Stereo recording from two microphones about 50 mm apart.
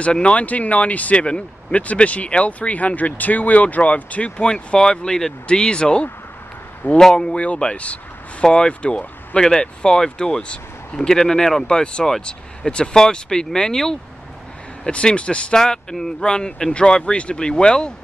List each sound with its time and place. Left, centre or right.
0.0 s speech: left
14.9 s speech: left
15.5 s speech: centre